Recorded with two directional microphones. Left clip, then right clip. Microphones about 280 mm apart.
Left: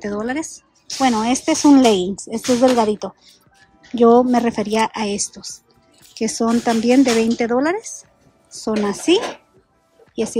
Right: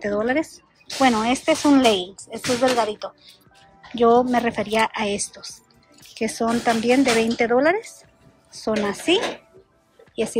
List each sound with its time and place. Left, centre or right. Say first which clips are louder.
0.0 s speech: right 2 dB; centre